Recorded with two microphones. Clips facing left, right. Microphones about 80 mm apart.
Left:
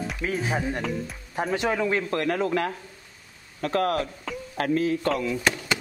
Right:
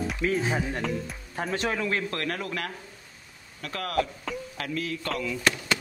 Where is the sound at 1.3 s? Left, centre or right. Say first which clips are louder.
Left 4 dB; centre.